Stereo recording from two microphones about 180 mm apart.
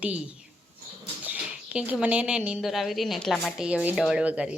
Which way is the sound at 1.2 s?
5° right (ahead or behind).